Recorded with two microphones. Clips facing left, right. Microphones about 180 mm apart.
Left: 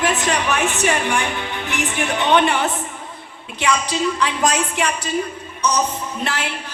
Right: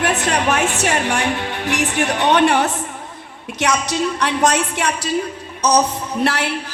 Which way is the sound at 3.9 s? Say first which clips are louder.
Right 1 dB; 70° right (ahead or behind).